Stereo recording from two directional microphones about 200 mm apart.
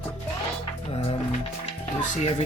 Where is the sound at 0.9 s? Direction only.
30° left (ahead or behind).